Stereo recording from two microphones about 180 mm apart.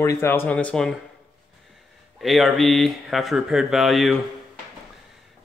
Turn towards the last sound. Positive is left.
turn(degrees=0)  # may be behind; listen again after turning